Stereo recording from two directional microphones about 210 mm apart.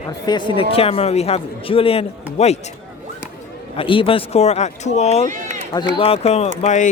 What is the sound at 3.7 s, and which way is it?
Speech, 25° left (ahead or behind).